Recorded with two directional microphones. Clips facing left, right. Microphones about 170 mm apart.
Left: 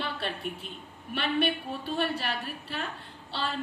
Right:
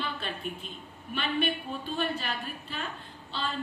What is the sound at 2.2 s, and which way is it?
Speech, 70° left (ahead or behind).